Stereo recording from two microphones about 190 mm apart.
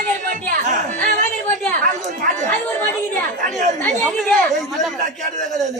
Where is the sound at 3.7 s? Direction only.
5° left (ahead or behind).